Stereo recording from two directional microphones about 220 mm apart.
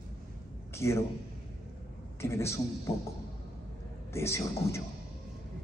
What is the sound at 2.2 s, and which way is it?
Speech, 10° left (ahead or behind).